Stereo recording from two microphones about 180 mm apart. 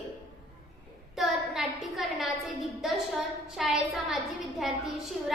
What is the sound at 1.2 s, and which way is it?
A woman's voice, centre (ahead or behind).